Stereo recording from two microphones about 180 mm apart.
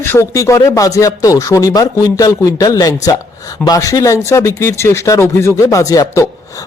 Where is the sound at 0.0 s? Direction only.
15° left (ahead or behind).